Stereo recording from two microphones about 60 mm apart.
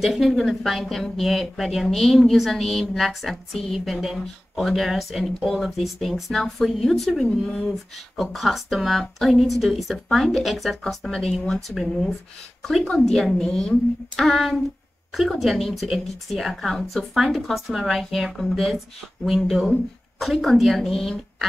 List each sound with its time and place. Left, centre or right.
0.0 s a woman's voice: centre
7.6 s a woman's voice: centre